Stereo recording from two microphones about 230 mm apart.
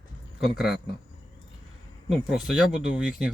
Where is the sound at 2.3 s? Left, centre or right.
Centre.